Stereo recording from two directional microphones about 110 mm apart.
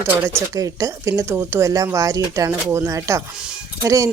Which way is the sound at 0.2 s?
30° right (ahead or behind).